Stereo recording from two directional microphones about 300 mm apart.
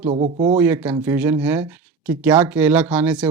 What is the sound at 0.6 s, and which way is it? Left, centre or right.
Speech, centre.